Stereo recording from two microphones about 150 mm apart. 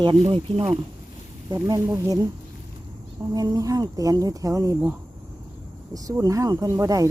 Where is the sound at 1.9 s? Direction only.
20° right (ahead or behind).